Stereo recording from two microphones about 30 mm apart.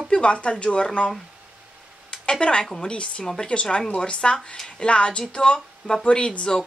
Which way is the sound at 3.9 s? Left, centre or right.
Left.